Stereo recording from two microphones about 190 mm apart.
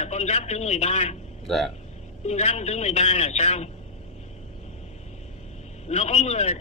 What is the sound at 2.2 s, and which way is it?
A man's voice, 35° left (ahead or behind).